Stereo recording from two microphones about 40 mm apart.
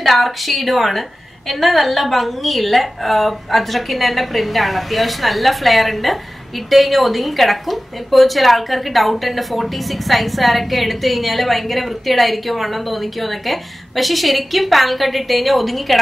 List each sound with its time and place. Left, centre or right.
0.0 s a woman's voice: centre